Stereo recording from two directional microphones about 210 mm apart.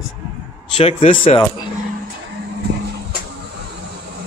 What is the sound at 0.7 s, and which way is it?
Speech, 25° left (ahead or behind).